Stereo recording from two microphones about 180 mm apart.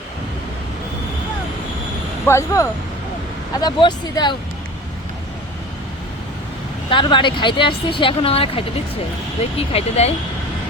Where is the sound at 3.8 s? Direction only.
25° left (ahead or behind).